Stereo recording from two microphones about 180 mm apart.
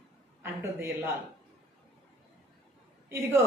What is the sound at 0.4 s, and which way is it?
Speech, 15° right (ahead or behind).